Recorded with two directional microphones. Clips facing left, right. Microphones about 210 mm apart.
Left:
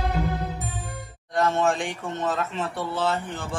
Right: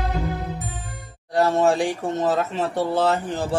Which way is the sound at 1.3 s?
35° right (ahead or behind).